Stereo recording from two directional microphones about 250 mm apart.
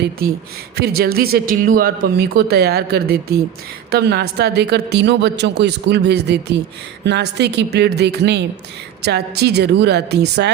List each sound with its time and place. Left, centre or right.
0.2 s speech: right